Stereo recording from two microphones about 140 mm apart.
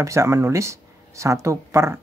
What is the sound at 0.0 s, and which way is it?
Speech, 20° right (ahead or behind).